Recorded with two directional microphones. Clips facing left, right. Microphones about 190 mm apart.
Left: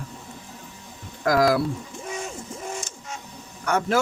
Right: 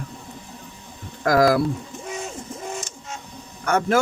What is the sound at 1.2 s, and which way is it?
Speech, 50° right (ahead or behind).